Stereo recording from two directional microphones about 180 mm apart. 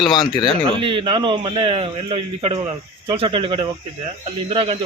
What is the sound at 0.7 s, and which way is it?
A man's voice, 25° right (ahead or behind).